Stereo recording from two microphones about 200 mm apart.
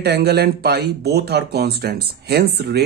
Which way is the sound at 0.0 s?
55° right (ahead or behind).